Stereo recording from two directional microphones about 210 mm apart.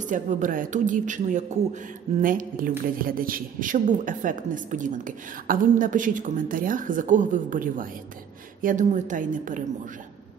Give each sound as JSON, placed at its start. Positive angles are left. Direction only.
{"t": 0.0, "sound": "a man's voice", "side_deg": -35}